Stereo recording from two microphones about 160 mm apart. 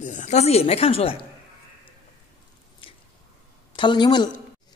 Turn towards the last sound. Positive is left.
turn(degrees=25)  # may be behind; listen again after turning